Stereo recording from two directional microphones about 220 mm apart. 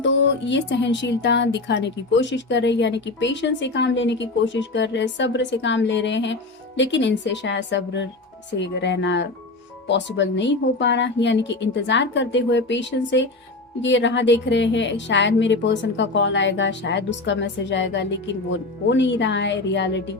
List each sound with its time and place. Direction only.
0.0 s a woman's voice: 55° left (ahead or behind)